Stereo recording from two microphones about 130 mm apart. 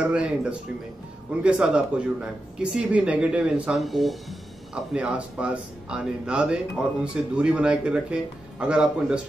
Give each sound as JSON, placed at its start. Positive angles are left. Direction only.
{"t": 0.0, "sound": "speech", "side_deg": -10}